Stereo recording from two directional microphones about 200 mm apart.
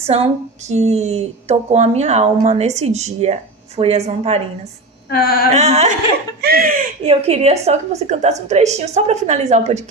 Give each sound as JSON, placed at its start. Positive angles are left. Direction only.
{"t": 0.7, "sound": "a woman's voice", "side_deg": -35}
{"t": 5.0, "sound": "a sound", "side_deg": 50}
{"t": 5.5, "sound": "a woman's voice", "side_deg": -35}
{"t": 6.4, "sound": "speech", "side_deg": -50}
{"t": 7.0, "sound": "a woman's voice", "side_deg": -30}